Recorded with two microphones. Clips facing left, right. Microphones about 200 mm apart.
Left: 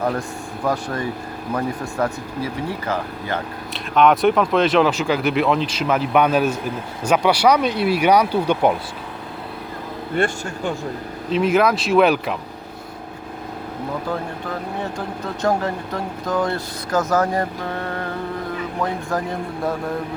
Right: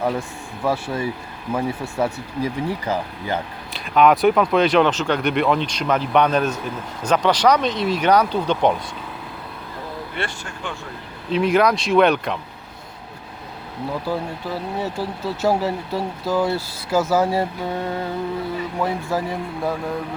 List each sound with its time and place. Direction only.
1.5 s speech: 5° right (ahead or behind)
3.7 s speech: centre (ahead or behind)
10.2 s speech: 45° left (ahead or behind)
11.3 s speech: centre (ahead or behind)
14.1 s speech: 5° right (ahead or behind)